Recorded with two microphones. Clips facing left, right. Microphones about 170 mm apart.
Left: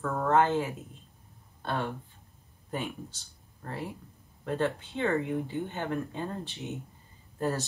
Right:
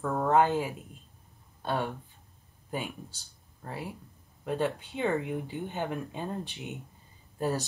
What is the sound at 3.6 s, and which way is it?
Speech, 5° right (ahead or behind).